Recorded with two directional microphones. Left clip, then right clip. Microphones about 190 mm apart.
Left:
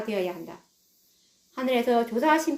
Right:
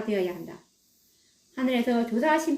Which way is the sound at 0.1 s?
10° right (ahead or behind).